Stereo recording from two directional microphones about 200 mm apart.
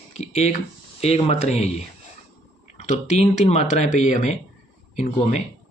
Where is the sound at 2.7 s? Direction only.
35° left (ahead or behind).